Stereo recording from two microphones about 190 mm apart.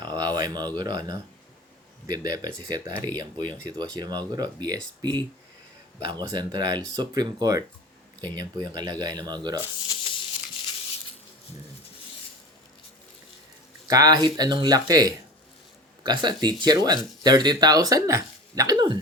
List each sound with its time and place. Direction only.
0.0 s a sound: 20° right (ahead or behind)
0.8 s speech: 20° right (ahead or behind)
9.8 s crumpling: 25° left (ahead or behind)
13.8 s speech: 20° right (ahead or behind)